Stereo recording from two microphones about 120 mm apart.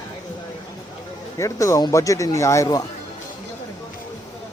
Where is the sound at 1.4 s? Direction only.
25° left (ahead or behind).